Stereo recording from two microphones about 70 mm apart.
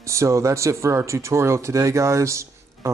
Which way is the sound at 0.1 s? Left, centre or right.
Right.